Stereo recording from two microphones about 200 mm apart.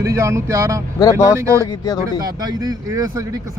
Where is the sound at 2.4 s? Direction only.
20° right (ahead or behind).